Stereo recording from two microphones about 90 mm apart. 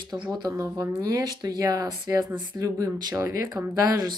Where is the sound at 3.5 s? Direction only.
45° right (ahead or behind).